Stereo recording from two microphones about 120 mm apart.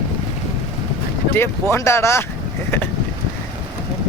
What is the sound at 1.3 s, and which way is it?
Speech, 20° left (ahead or behind).